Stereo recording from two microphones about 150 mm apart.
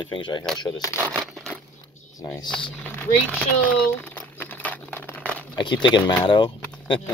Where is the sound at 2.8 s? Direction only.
10° left (ahead or behind).